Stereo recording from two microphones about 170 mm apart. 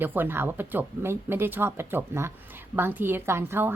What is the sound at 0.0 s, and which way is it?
A woman's voice, 10° right (ahead or behind).